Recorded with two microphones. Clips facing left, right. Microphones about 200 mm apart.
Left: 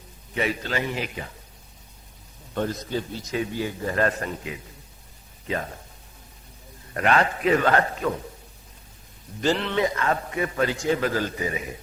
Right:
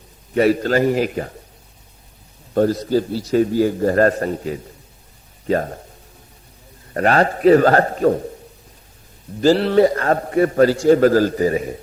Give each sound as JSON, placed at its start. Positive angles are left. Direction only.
{"t": 0.3, "sound": "a man's voice", "side_deg": -45}
{"t": 2.6, "sound": "a man's voice", "side_deg": -40}
{"t": 6.9, "sound": "a man's voice", "side_deg": -40}
{"t": 9.4, "sound": "a man's voice", "side_deg": -35}